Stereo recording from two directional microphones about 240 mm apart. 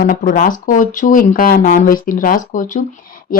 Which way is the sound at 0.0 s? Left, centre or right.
Left.